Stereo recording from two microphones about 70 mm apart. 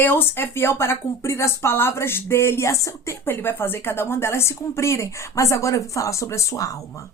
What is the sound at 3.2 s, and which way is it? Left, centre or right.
A woman's voice, left.